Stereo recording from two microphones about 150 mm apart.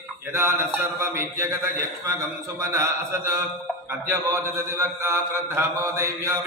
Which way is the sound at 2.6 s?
20° right (ahead or behind).